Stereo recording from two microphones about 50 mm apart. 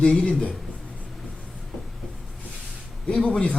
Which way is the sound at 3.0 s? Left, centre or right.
Centre.